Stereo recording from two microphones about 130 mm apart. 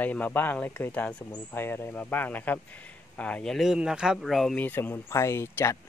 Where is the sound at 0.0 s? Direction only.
10° left (ahead or behind).